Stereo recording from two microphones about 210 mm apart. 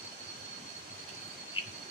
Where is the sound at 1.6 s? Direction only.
25° left (ahead or behind).